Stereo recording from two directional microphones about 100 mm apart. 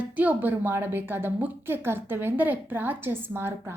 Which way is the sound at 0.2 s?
15° right (ahead or behind).